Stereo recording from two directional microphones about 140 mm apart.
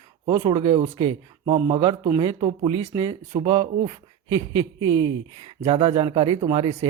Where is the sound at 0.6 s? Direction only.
50° right (ahead or behind).